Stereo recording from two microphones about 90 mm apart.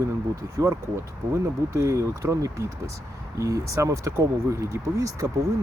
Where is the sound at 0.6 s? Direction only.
35° right (ahead or behind).